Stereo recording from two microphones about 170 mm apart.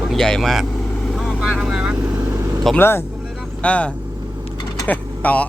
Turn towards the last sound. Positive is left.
turn(degrees=10)  # may be behind; listen again after turning